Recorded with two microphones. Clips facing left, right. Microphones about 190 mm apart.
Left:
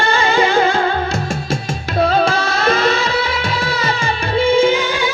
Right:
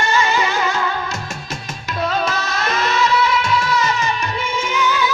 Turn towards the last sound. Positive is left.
turn(degrees=30)  # may be behind; listen again after turning